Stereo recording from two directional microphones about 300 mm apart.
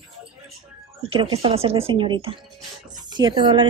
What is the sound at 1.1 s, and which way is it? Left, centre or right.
Speech, centre.